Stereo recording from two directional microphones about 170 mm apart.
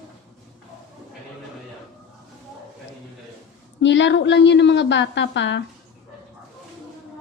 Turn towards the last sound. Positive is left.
turn(degrees=90)